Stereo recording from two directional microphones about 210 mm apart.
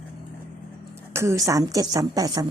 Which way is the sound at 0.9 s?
10° right (ahead or behind).